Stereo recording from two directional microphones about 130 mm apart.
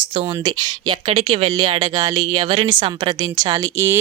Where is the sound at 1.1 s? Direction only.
45° right (ahead or behind).